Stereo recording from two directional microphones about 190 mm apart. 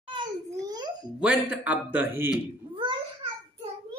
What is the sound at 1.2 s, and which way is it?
Speech, 5° right (ahead or behind).